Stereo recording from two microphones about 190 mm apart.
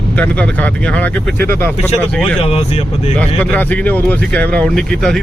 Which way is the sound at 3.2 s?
10° left (ahead or behind).